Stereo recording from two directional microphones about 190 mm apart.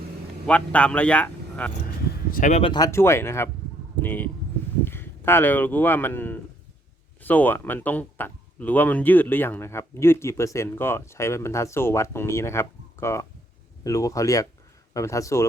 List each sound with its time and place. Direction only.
0.4 s a man's voice: 5° left (ahead or behind)
2.3 s speech: 40° left (ahead or behind)
2.6 s speech: 25° left (ahead or behind)